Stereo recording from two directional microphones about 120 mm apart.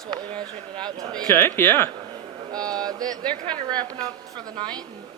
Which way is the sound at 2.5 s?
35° right (ahead or behind).